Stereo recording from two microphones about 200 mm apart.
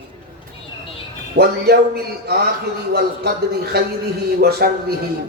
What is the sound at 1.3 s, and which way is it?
A man's voice, 50° right (ahead or behind).